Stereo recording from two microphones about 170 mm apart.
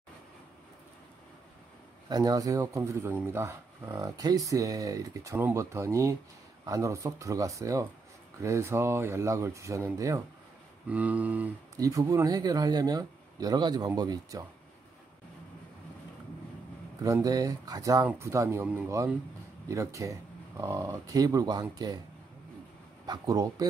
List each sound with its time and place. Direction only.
2.0 s a man's voice: 20° right (ahead or behind)
11.7 s a man's voice: 20° right (ahead or behind)
17.0 s a man's voice: 20° right (ahead or behind)
23.0 s a man's voice: 25° right (ahead or behind)